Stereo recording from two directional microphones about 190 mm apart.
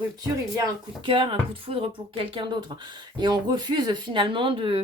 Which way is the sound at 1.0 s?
25° right (ahead or behind).